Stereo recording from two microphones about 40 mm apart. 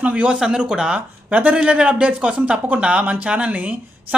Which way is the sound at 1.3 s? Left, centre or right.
Right.